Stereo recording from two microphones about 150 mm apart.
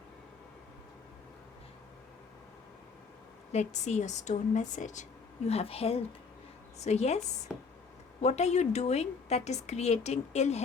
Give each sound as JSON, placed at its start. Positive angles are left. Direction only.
{"t": 3.5, "sound": "a woman's voice", "side_deg": 50}
{"t": 5.5, "sound": "a woman's voice", "side_deg": 40}
{"t": 7.5, "sound": "speech", "side_deg": -5}
{"t": 8.2, "sound": "a woman's voice", "side_deg": 50}